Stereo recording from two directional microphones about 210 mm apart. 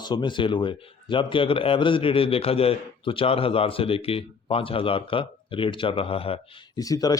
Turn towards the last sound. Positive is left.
turn(degrees=15)  # may be behind; listen again after turning